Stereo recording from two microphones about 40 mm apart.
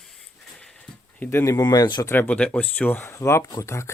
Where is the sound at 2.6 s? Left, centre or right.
Left.